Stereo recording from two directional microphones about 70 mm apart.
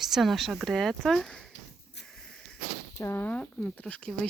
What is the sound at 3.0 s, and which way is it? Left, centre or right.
Speech, left.